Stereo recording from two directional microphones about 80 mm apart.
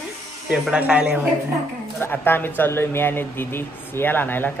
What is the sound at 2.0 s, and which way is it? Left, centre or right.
Speech, left.